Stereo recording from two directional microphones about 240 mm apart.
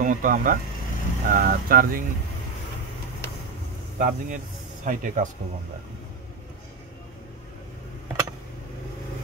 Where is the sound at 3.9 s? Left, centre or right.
Right.